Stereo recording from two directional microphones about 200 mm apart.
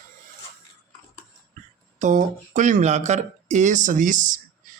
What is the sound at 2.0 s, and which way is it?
Speech, 40° right (ahead or behind).